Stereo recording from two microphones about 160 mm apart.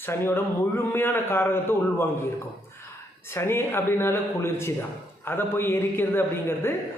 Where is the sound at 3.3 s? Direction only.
15° left (ahead or behind).